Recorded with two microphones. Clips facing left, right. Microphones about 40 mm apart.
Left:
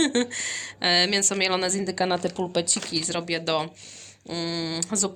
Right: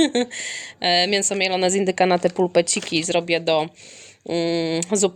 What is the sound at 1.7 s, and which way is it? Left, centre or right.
Speech, right.